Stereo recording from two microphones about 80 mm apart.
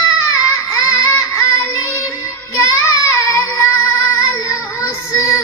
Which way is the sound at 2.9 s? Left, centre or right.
Left.